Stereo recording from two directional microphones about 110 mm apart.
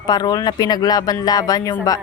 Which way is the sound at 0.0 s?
40° left (ahead or behind).